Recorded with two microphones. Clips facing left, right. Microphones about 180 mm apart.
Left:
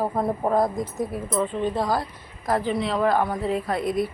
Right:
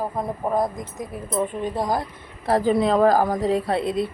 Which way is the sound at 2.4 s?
40° right (ahead or behind).